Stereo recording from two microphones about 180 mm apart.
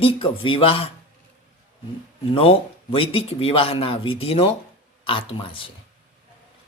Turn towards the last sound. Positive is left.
turn(degrees=30)  # may be behind; listen again after turning